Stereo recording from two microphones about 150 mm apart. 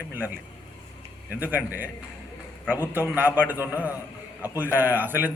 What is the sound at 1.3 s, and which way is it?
A man's voice, 10° right (ahead or behind).